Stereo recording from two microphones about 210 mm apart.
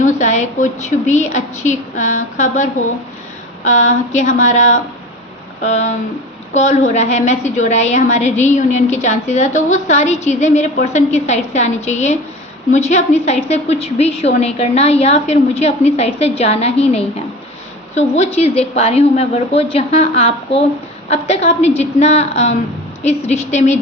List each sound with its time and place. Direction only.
0.2 s a woman's voice: 35° left (ahead or behind)